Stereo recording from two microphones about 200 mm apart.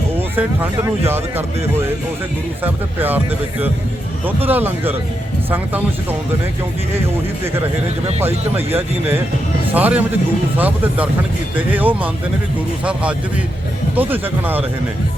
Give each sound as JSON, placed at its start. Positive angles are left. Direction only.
{"t": 0.2, "sound": "speech", "side_deg": -10}
{"t": 4.4, "sound": "speech", "side_deg": -10}
{"t": 8.5, "sound": "speech", "side_deg": -10}